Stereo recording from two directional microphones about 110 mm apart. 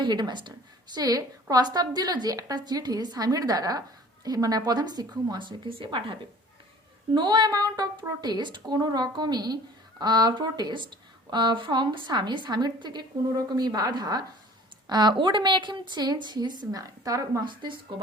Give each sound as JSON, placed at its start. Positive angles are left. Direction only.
{"t": 0.0, "sound": "a woman's voice", "side_deg": -40}
{"t": 17.4, "sound": "speech", "side_deg": -45}